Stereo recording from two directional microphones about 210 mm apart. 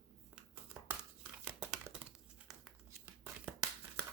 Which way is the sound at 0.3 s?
5° right (ahead or behind).